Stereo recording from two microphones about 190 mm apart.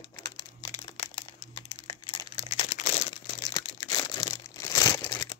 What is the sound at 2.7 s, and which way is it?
Crumpling, 35° left (ahead or behind).